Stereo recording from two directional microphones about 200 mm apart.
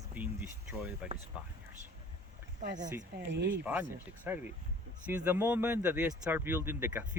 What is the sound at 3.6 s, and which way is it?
Speech, 10° right (ahead or behind).